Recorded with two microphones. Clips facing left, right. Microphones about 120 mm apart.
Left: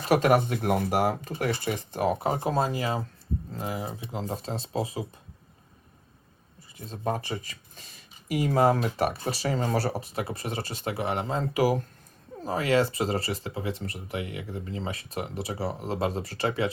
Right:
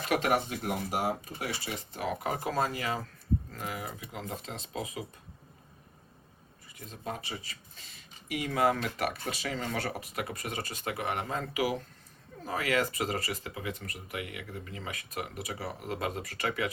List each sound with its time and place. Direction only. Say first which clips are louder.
0.0 s speech: left 6 dB; 40° left (ahead or behind); by 1.3 s 65° left (ahead or behind)
1.4 s speech: left 8 dB; 50° left (ahead or behind); by 5.0 s 30° left (ahead or behind)
6.7 s speech: left 8 dB; 30° left (ahead or behind)
11.5 s speech: left 7 dB; 40° left (ahead or behind)
12.4 s speech: left 6 dB; 30° left (ahead or behind)